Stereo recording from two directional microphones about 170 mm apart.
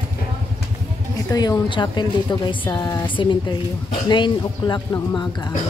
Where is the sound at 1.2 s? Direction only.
20° left (ahead or behind).